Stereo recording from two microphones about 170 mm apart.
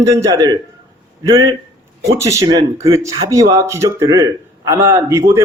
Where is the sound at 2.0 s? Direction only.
20° right (ahead or behind).